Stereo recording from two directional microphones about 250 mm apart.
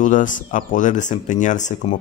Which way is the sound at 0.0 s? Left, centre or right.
Left.